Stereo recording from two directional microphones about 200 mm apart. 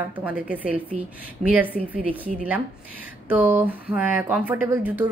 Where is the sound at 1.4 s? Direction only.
30° right (ahead or behind).